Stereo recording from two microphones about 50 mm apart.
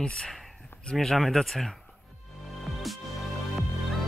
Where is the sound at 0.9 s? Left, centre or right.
Centre.